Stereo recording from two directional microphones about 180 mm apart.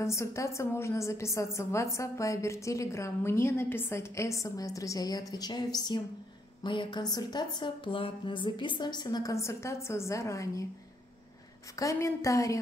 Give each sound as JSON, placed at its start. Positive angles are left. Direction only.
{"t": 0.0, "sound": "a woman's voice", "side_deg": 15}
{"t": 11.8, "sound": "a woman's voice", "side_deg": 15}